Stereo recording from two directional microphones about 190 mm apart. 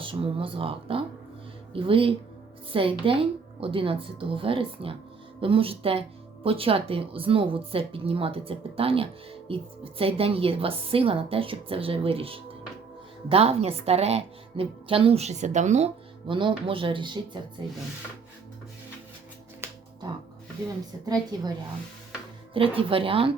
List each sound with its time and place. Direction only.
0.0 s a woman's voice: 30° right (ahead or behind)
19.6 s finger snapping: 15° right (ahead or behind)
21.3 s speech: 20° right (ahead or behind)
22.8 s speech: 30° right (ahead or behind)